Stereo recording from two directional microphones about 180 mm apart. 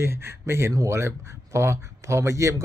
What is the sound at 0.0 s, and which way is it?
A man's voice, 15° right (ahead or behind).